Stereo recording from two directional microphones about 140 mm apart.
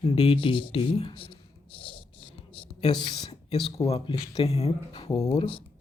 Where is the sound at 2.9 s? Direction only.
30° left (ahead or behind).